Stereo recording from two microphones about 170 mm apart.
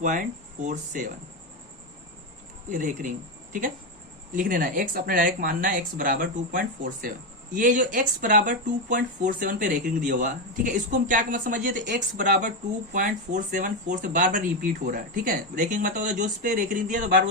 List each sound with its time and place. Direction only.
0.0 s speech: 50° right (ahead or behind)
2.6 s speech: 50° right (ahead or behind)
4.3 s speech: 50° right (ahead or behind)